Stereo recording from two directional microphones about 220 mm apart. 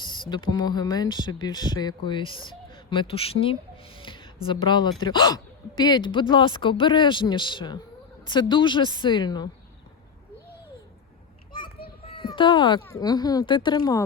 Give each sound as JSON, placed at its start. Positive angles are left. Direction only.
{"t": 0.0, "sound": "speech", "side_deg": 20}
{"t": 12.0, "sound": "speech", "side_deg": 20}